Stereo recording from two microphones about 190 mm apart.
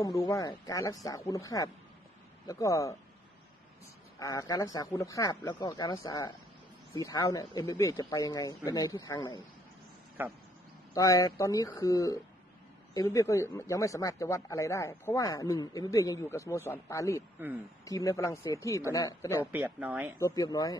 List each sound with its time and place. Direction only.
0.0 s speech: 15° left (ahead or behind)
4.2 s speech: 15° left (ahead or behind)
10.2 s speech: 10° right (ahead or behind)
11.0 s speech: 20° left (ahead or behind)
17.4 s speech: 10° right (ahead or behind)
17.8 s speech: 15° left (ahead or behind)
19.4 s speech: 10° right (ahead or behind)
20.2 s speech: 15° left (ahead or behind)